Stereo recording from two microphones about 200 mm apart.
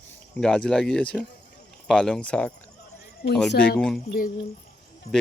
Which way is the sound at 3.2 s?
55° left (ahead or behind).